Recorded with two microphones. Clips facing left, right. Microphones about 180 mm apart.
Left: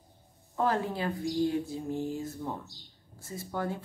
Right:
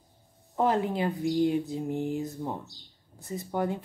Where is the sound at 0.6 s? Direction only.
20° right (ahead or behind).